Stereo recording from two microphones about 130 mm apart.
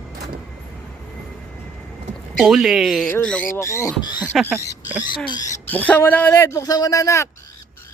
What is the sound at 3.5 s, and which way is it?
Bird, 20° left (ahead or behind).